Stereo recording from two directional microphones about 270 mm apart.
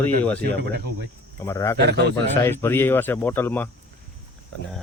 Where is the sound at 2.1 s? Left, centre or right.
Centre.